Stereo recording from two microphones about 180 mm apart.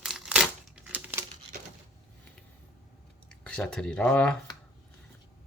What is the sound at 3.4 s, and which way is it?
Speech, 5° left (ahead or behind).